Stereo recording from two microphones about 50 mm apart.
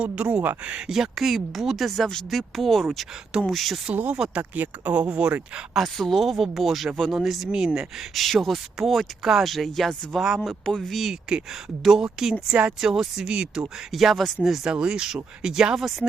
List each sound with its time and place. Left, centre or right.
0.0 s speech: right
0.9 s speech: centre
4.4 s speech: right
5.7 s speech: centre
10.2 s speech: centre
11.1 s speech: centre
11.8 s speech: centre
13.3 s speech: right
13.9 s speech: centre
14.7 s speech: centre